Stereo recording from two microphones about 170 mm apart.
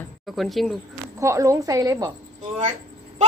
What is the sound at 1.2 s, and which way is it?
Speech, 20° right (ahead or behind).